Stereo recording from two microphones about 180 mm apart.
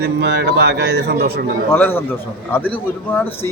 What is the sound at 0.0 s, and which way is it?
A man's voice, 70° right (ahead or behind).